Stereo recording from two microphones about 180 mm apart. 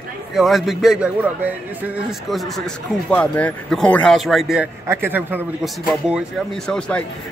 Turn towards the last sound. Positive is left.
turn(degrees=5)  # may be behind; listen again after turning